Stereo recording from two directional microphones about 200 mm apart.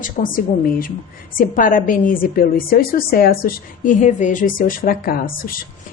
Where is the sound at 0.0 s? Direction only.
45° left (ahead or behind).